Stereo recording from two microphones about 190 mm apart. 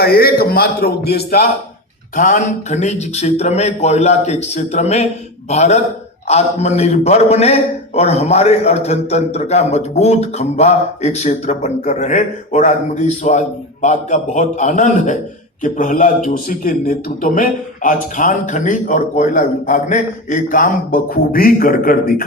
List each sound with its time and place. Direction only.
0.0 s a man's voice: 55° left (ahead or behind)
2.1 s a man's voice: 40° left (ahead or behind)